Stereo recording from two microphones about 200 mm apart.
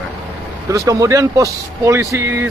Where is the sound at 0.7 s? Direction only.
15° right (ahead or behind).